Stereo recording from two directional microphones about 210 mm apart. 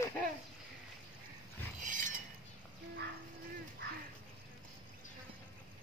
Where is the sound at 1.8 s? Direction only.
40° right (ahead or behind).